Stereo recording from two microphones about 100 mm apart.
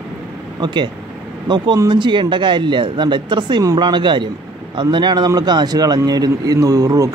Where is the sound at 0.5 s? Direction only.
50° right (ahead or behind).